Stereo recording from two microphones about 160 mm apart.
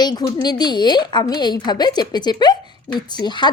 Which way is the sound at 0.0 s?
25° left (ahead or behind).